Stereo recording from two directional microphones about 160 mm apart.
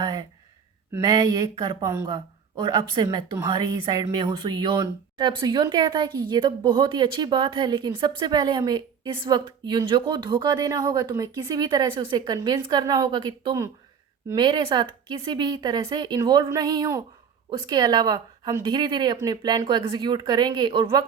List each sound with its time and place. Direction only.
0.0 s speech: 25° right (ahead or behind)